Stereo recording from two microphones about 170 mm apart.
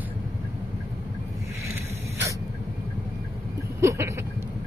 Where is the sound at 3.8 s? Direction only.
15° right (ahead or behind).